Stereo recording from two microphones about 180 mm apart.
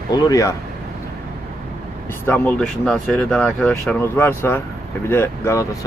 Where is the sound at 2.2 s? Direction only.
10° left (ahead or behind).